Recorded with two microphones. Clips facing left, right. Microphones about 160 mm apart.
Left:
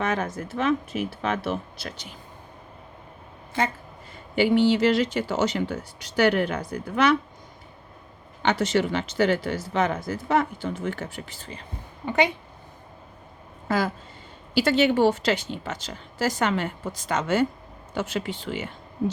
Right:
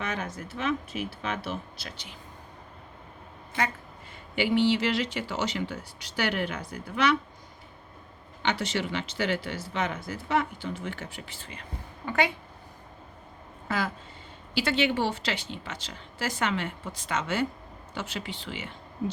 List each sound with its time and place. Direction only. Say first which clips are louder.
0.0 s speech: left 7 dB; 50° left (ahead or behind)
4.4 s speech: left 5 dB; 45° left (ahead or behind)
8.4 s speech: left 6 dB; 45° left (ahead or behind)
12.0 s speech: left 4 dB; 20° left (ahead or behind)
13.7 s speech: left 6 dB; 40° left (ahead or behind)